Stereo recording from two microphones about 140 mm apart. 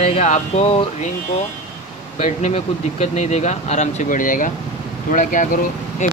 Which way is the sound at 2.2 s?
55° left (ahead or behind).